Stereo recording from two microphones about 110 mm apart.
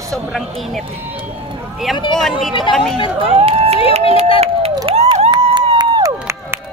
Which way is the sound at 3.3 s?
60° right (ahead or behind).